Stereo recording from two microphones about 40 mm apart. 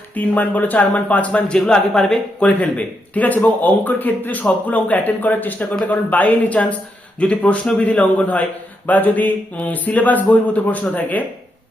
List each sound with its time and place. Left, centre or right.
0.1 s speech: left
2.0 s speech: centre
2.4 s a man's voice: left